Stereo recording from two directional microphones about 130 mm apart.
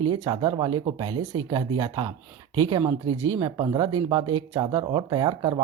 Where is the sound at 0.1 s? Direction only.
35° right (ahead or behind).